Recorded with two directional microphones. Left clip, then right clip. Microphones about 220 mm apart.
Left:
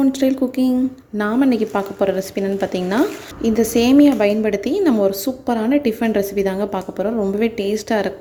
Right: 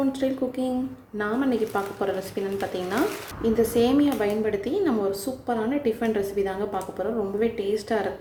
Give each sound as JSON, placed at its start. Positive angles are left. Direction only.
{"t": 0.1, "sound": "a woman's voice", "side_deg": 40}